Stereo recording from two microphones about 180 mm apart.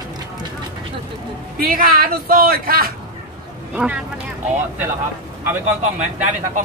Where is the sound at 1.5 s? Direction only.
50° right (ahead or behind).